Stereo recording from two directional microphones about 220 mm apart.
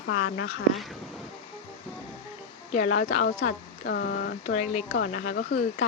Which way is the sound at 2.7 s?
35° left (ahead or behind).